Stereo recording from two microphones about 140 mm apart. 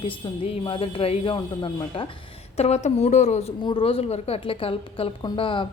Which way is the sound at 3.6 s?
35° left (ahead or behind).